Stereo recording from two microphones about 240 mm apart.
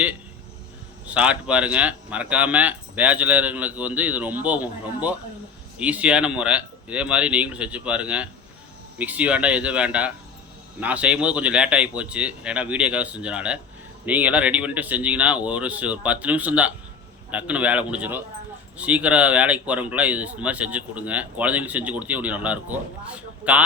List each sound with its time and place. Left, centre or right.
1.0 s a man's voice: centre